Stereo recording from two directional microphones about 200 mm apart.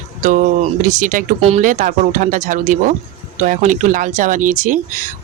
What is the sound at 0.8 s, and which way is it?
Speech, 40° right (ahead or behind).